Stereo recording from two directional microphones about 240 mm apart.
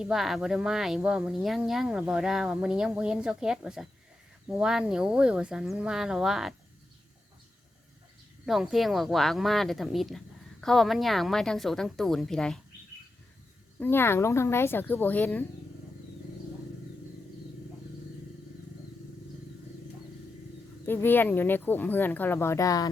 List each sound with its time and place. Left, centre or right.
0.0 s speech: centre
8.4 s speech: centre
13.7 s speech: centre
20.8 s speech: centre